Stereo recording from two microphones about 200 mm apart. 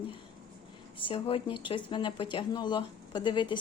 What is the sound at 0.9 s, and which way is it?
A woman's voice, 25° left (ahead or behind).